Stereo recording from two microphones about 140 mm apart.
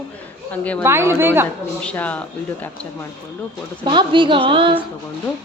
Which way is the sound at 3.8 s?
35° right (ahead or behind).